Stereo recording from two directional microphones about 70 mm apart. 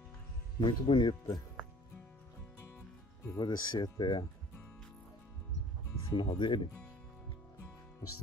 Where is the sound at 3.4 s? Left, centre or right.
Left.